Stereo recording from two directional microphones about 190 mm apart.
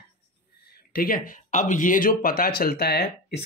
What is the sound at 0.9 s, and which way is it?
Speech, 50° left (ahead or behind).